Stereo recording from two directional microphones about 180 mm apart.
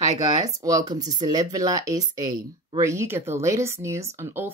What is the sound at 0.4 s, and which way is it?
Speech, 20° right (ahead or behind).